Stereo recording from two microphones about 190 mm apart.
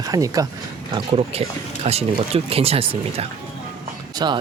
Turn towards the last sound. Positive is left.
turn(degrees=-20)  # may be behind; listen again after turning